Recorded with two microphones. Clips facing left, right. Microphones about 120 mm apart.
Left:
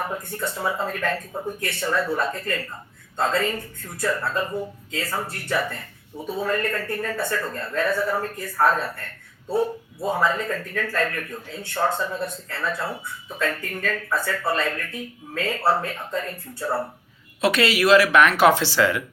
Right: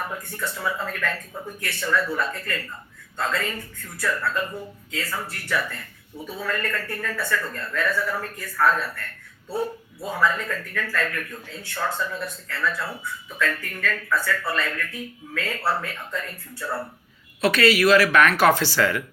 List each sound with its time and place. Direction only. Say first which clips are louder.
0.1 s speech: left 3 dB; 25° left (ahead or behind)